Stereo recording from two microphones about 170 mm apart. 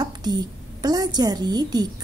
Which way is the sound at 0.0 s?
25° right (ahead or behind).